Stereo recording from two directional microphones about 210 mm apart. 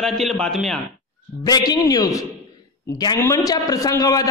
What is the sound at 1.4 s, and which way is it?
A man's voice, 20° left (ahead or behind).